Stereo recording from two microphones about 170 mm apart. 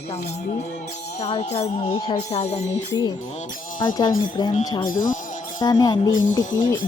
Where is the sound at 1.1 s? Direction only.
40° left (ahead or behind).